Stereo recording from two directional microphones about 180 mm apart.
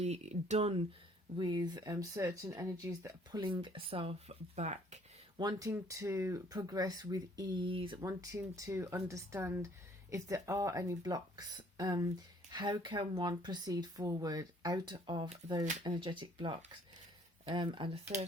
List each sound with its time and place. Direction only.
0.0 s speech: 40° right (ahead or behind)
1.4 s speech: 25° right (ahead or behind); by 4.9 s 40° right (ahead or behind)
5.4 s speech: 20° right (ahead or behind)
8.0 s speech: 15° right (ahead or behind)